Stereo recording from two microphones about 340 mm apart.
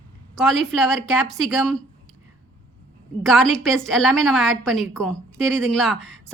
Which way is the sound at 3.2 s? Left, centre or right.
Centre.